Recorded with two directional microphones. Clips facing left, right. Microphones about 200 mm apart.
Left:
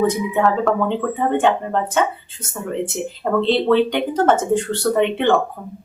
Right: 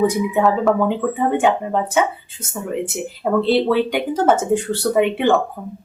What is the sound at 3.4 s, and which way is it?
Speech, 10° right (ahead or behind).